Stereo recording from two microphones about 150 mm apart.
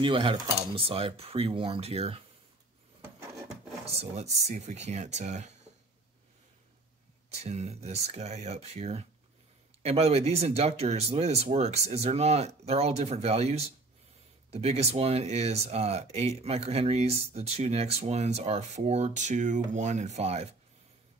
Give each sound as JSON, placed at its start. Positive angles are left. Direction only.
{"t": 0.0, "sound": "speech", "side_deg": -35}
{"t": 3.8, "sound": "speech", "side_deg": -45}
{"t": 7.2, "sound": "speech", "side_deg": -45}